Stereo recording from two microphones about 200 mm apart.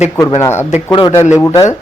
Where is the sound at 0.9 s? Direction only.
20° left (ahead or behind).